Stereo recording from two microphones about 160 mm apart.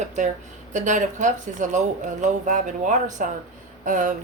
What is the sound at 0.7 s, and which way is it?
Speech, 50° right (ahead or behind).